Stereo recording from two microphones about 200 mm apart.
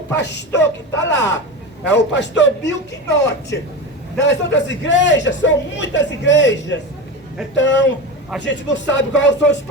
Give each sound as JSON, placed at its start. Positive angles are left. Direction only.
{"t": 0.2, "sound": "a man's voice", "side_deg": 60}